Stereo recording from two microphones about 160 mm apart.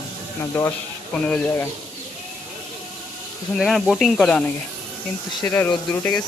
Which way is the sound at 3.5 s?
Centre (ahead or behind).